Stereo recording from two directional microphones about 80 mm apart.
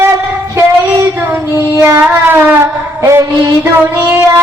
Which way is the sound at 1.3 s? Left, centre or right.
Right.